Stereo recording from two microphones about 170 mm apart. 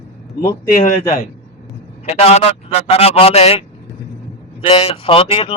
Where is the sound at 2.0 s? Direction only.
40° left (ahead or behind).